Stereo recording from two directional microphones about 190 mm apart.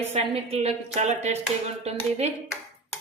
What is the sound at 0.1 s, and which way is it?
A woman's voice, 30° right (ahead or behind).